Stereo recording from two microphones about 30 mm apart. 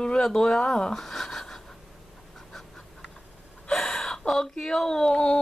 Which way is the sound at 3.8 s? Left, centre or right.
Centre.